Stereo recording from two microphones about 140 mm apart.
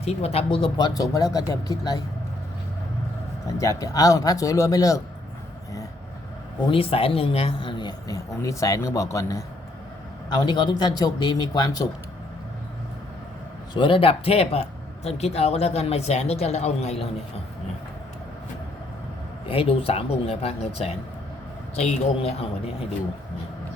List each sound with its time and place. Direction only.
0.0 s speech: 50° left (ahead or behind); by 2.0 s 25° left (ahead or behind)
3.4 s speech: 25° left (ahead or behind)
6.7 s a man's voice: 40° left (ahead or behind); by 11.9 s 25° left (ahead or behind)
13.7 s speech: 40° left (ahead or behind)
19.5 s speech: 40° left (ahead or behind)